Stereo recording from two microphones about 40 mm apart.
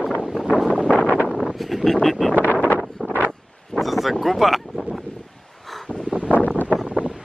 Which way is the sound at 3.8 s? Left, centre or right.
Centre.